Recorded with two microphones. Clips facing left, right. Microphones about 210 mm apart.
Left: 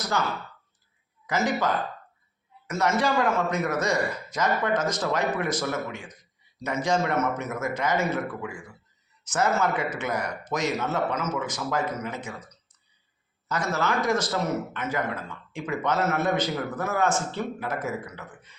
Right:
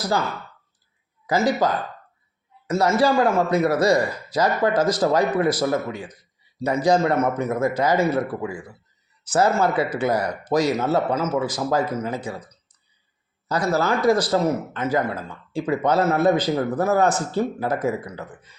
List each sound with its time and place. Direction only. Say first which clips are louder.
1.3 s a man's voice: right 5 dB; 35° right (ahead or behind)